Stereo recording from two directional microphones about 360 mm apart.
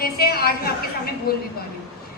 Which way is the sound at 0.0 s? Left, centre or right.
Left.